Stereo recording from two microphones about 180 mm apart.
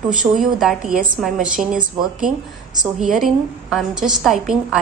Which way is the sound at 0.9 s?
50° right (ahead or behind).